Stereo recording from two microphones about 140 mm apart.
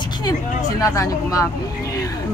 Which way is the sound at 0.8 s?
25° left (ahead or behind).